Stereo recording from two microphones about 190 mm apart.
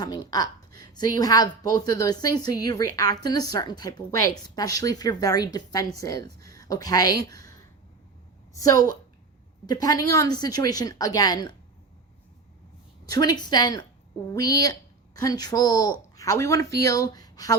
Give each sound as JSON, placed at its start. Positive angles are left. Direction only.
{"t": 0.0, "sound": "a woman's voice", "side_deg": 20}
{"t": 8.5, "sound": "a woman's voice", "side_deg": 15}
{"t": 13.1, "sound": "a woman's voice", "side_deg": 20}